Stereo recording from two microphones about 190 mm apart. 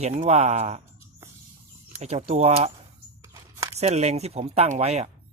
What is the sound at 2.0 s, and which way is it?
Speech, 35° right (ahead or behind).